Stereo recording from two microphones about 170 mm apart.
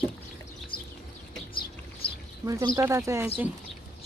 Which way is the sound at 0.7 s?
30° left (ahead or behind).